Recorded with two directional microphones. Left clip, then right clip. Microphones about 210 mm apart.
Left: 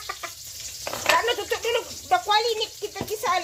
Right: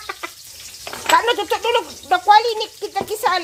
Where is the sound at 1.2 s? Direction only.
50° right (ahead or behind).